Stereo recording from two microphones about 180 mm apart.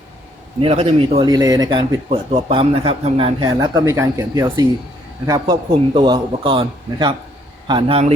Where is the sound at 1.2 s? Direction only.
20° right (ahead or behind).